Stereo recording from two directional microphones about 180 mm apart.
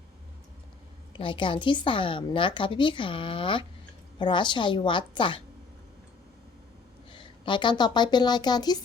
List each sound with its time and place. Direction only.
1.1 s a woman's voice: 30° left (ahead or behind)
7.1 s a woman's voice: 25° left (ahead or behind)